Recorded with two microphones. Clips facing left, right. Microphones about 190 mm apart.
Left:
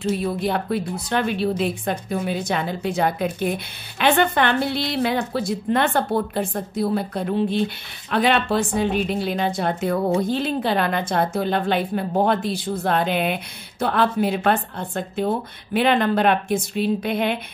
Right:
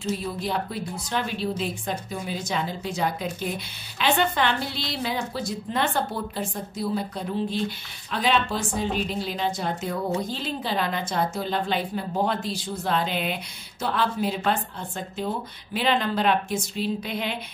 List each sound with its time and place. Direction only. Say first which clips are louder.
0.0 s a woman's voice: left 6 dB; 60° left (ahead or behind)